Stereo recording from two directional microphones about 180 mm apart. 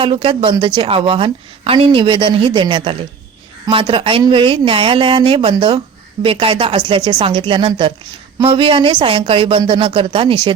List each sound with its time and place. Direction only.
0.0 s a woman's voice: 30° right (ahead or behind)